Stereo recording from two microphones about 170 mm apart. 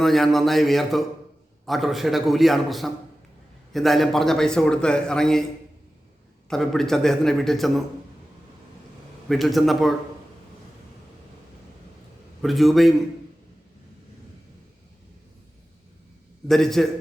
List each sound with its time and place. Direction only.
0.0 s a man's voice: centre (ahead or behind)
6.5 s a man's voice: centre (ahead or behind)
9.3 s a man's voice: centre (ahead or behind)
12.4 s a man's voice: centre (ahead or behind)
16.5 s a man's voice: centre (ahead or behind)